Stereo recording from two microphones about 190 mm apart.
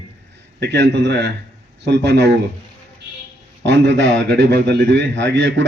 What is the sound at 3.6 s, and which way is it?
A man's voice, 70° right (ahead or behind).